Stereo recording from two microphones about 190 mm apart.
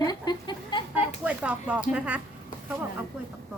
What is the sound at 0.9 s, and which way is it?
Speech, 5° right (ahead or behind).